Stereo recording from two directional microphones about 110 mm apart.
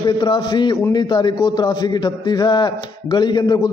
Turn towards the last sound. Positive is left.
turn(degrees=40)  # may be behind; listen again after turning